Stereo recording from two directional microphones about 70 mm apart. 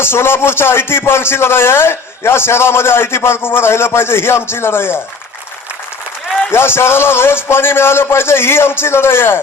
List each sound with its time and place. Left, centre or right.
0.0 s a man's voice: left
6.5 s a man's voice: left